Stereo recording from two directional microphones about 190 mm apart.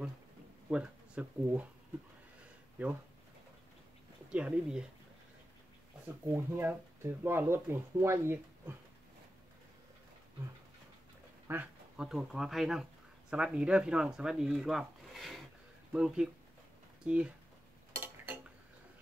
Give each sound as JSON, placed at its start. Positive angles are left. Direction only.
{"t": 0.7, "sound": "speech", "side_deg": -5}
{"t": 2.8, "sound": "speech", "side_deg": -10}
{"t": 4.3, "sound": "speech", "side_deg": -5}
{"t": 6.2, "sound": "speech", "side_deg": -15}
{"t": 11.4, "sound": "speech", "side_deg": -10}
{"t": 17.9, "sound": "a sound", "side_deg": -10}